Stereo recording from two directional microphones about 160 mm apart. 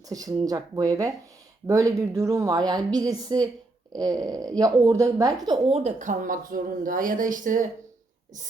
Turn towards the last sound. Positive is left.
turn(degrees=-55)  # may be behind; listen again after turning